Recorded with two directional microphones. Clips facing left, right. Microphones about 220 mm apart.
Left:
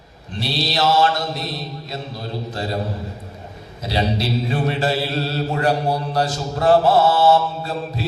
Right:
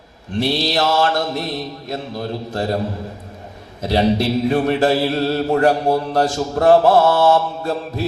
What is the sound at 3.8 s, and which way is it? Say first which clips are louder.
Mantra: right 6 dB; 50° right (ahead or behind).